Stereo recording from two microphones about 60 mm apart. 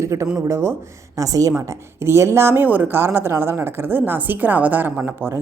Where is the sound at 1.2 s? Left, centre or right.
Right.